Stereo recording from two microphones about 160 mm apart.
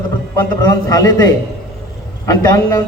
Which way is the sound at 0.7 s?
20° left (ahead or behind).